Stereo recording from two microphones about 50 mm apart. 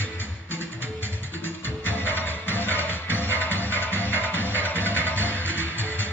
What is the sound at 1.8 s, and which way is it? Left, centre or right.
Music, left.